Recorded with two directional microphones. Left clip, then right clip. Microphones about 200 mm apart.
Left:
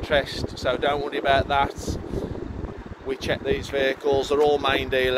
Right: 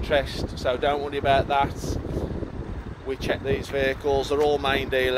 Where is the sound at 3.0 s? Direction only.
Centre (ahead or behind).